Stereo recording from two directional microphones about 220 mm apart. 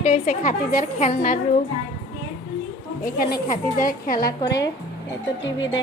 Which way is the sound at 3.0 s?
40° left (ahead or behind).